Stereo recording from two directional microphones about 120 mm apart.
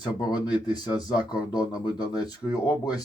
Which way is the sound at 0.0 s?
35° left (ahead or behind).